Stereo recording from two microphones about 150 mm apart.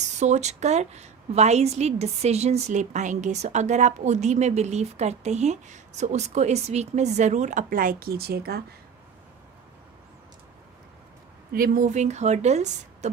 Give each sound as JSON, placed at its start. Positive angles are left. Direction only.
{"t": 0.2, "sound": "a woman's voice", "side_deg": -50}
{"t": 11.5, "sound": "a woman's voice", "side_deg": -70}